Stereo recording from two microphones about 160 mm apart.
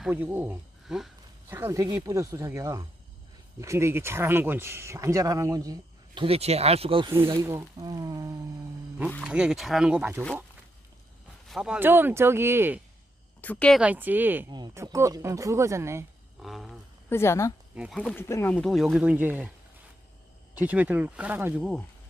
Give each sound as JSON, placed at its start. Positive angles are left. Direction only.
{"t": 0.0, "sound": "speech", "side_deg": -10}
{"t": 1.5, "sound": "speech", "side_deg": -15}
{"t": 6.1, "sound": "speech", "side_deg": -35}
{"t": 7.4, "sound": "speech", "side_deg": -20}
{"t": 9.2, "sound": "speech", "side_deg": -5}
{"t": 11.4, "sound": "speech", "side_deg": 0}
{"t": 13.4, "sound": "speech", "side_deg": 10}
{"t": 13.8, "sound": "speech", "side_deg": -10}
{"t": 14.5, "sound": "speech", "side_deg": -25}
{"t": 16.4, "sound": "speech", "side_deg": 0}
{"t": 17.1, "sound": "speech", "side_deg": 15}
{"t": 17.7, "sound": "speech", "side_deg": 0}
{"t": 18.2, "sound": "speech", "side_deg": 15}
{"t": 20.6, "sound": "speech", "side_deg": -10}